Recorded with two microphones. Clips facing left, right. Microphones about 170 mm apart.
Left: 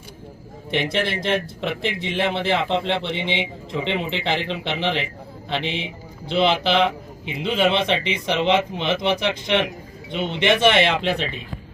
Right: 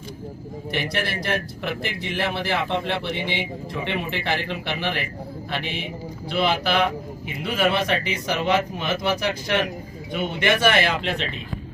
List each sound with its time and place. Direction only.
0.7 s a man's voice: 25° left (ahead or behind)